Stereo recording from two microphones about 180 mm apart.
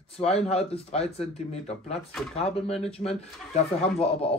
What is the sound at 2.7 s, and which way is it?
Speech, 35° left (ahead or behind).